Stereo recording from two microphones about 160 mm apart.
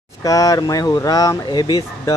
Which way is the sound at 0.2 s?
20° left (ahead or behind).